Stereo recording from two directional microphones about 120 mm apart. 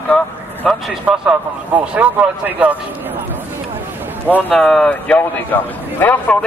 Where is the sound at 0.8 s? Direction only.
10° right (ahead or behind).